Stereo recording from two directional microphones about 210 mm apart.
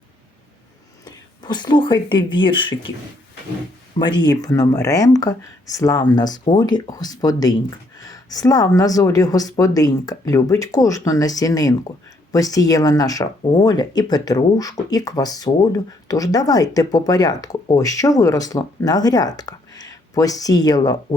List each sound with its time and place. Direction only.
1.0 s speech: 20° left (ahead or behind)
3.9 s speech: 20° left (ahead or behind)